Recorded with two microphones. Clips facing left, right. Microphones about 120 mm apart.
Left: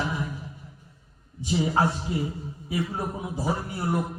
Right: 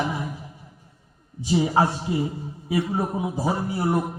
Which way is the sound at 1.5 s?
10° right (ahead or behind).